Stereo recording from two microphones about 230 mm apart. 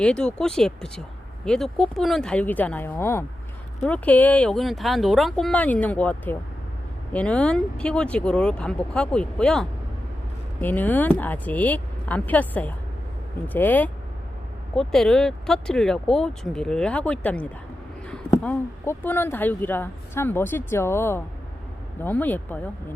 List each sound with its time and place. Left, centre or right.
0.0 s speech: centre